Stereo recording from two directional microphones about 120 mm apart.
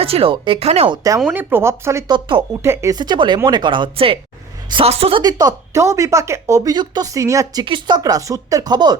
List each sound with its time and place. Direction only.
0.0 s speech: 50° right (ahead or behind)
1.3 s speech: 15° right (ahead or behind)
2.0 s speech: 40° right (ahead or behind)
2.6 s speech: 20° right (ahead or behind)
2.9 s speech: 40° right (ahead or behind); by 5.2 s 55° right (ahead or behind)
5.2 s speech: 30° right (ahead or behind)
7.6 s speech: 40° right (ahead or behind)